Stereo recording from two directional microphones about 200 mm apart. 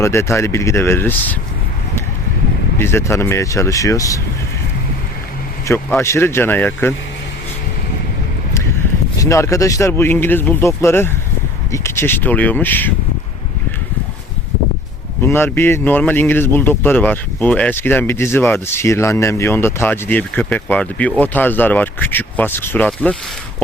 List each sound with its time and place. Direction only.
0.0 s speech: 15° left (ahead or behind)
2.7 s speech: 10° left (ahead or behind)
5.6 s speech: 10° left (ahead or behind)
9.1 s speech: 15° left (ahead or behind)
15.2 s speech: 10° left (ahead or behind)